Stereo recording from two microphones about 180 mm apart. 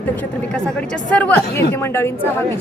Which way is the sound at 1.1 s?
10° left (ahead or behind).